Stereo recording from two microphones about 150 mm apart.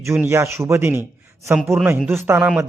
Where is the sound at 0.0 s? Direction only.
15° right (ahead or behind).